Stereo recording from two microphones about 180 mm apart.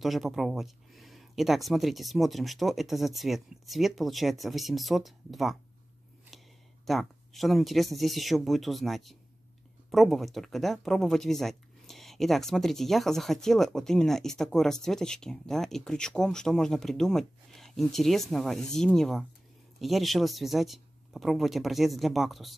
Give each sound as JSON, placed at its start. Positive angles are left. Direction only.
{"t": 0.0, "sound": "speech", "side_deg": 0}
{"t": 6.9, "sound": "speech", "side_deg": 0}